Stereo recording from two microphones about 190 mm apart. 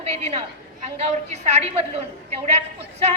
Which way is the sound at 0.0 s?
35° right (ahead or behind).